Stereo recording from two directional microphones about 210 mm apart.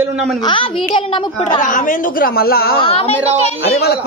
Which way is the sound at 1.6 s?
40° left (ahead or behind).